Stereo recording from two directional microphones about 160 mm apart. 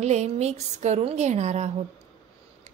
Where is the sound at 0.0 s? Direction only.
45° right (ahead or behind).